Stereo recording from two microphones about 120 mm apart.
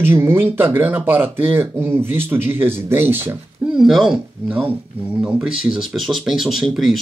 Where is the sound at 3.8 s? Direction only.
5° right (ahead or behind).